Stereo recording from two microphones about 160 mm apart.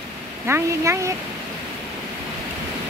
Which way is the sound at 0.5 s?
15° right (ahead or behind).